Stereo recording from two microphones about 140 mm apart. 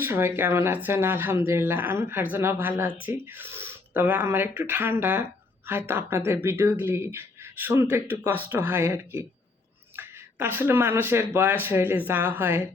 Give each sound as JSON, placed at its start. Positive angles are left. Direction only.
{"t": 0.0, "sound": "speech", "side_deg": -15}